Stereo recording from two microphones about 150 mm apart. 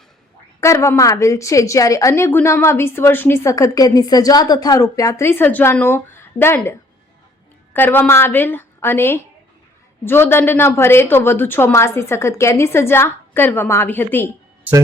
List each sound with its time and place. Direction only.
0.6 s a woman's voice: 20° left (ahead or behind)